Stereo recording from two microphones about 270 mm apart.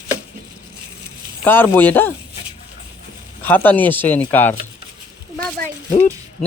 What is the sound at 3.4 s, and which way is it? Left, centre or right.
Speech, centre.